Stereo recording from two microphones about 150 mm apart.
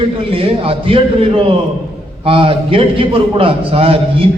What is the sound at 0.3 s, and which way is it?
A man's voice, 40° right (ahead or behind).